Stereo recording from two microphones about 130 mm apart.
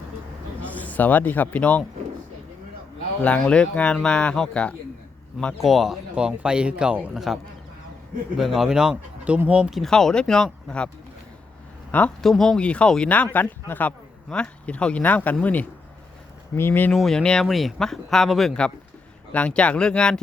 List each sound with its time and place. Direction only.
0.6 s speech: 10° left (ahead or behind)
3.2 s a man's voice: 10° left (ahead or behind)
8.4 s speech: centre (ahead or behind)
11.9 s speech: 10° left (ahead or behind)
16.9 s speech: 5° left (ahead or behind)